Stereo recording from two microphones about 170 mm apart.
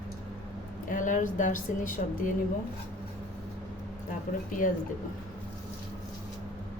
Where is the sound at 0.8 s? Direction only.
50° left (ahead or behind).